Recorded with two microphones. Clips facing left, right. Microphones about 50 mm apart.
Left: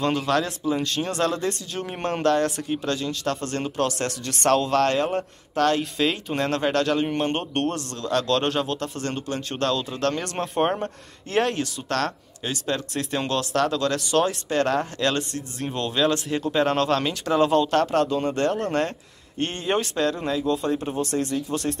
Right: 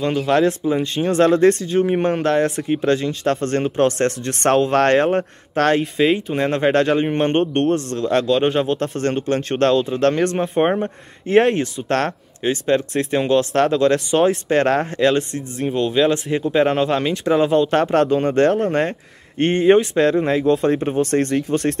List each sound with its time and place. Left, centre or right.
0.0 s speech: centre
0.7 s speech: right
1.7 s speech: centre
2.7 s speech: right
4.8 s speech: right
5.8 s speech: right
8.3 s speech: centre
8.7 s speech: right
10.5 s speech: right
14.5 s speech: right
15.3 s speech: centre
17.6 s speech: right
18.6 s speech: right